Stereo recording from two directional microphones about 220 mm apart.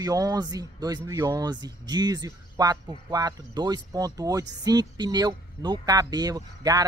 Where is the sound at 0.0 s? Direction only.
15° right (ahead or behind).